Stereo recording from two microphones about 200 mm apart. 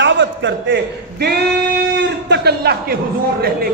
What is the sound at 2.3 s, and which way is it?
Speech, 55° right (ahead or behind).